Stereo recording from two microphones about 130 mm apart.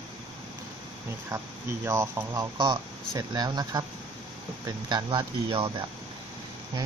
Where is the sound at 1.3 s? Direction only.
25° right (ahead or behind); by 5.7 s 45° right (ahead or behind).